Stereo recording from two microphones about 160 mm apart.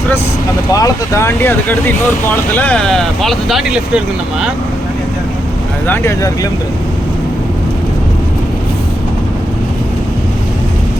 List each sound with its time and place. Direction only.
0.7 s speech: 20° left (ahead or behind)
2.6 s speech: 5° left (ahead or behind)
5.9 s speech: 15° left (ahead or behind)